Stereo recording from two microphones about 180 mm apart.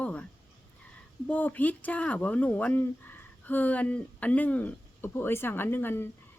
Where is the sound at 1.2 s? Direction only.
10° left (ahead or behind).